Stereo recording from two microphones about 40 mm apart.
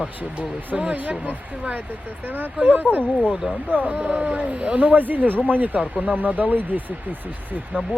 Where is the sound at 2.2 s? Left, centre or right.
Right.